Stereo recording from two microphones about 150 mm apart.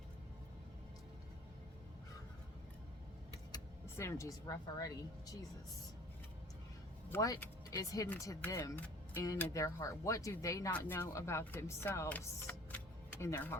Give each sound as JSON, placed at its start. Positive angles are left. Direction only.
{"t": 3.5, "sound": "speech", "side_deg": 20}
{"t": 7.1, "sound": "speech", "side_deg": 25}